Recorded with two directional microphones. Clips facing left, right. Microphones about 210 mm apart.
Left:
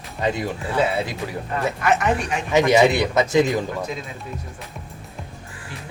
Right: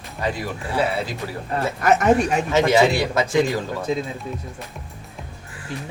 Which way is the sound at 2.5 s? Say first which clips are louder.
Left 2 dB; 15° left (ahead or behind).